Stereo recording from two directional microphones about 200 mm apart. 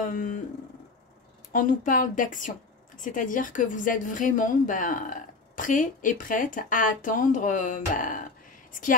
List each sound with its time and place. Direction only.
0.0 s a woman's voice: 40° left (ahead or behind)
1.5 s a woman's voice: 40° left (ahead or behind)